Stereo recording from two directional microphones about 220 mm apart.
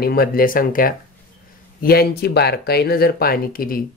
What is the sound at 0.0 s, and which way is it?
Speech, 45° left (ahead or behind).